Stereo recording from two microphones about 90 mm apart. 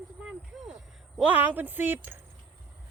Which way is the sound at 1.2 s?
15° right (ahead or behind).